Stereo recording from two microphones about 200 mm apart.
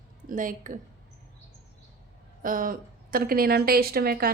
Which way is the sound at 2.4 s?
45° right (ahead or behind).